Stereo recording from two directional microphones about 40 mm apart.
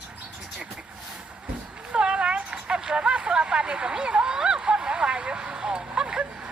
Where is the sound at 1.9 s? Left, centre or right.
Right.